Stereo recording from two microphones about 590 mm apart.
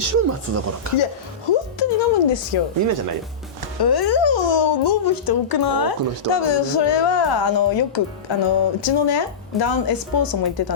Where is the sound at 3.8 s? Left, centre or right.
Left.